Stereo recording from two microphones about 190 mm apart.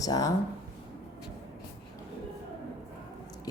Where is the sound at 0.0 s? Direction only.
20° left (ahead or behind).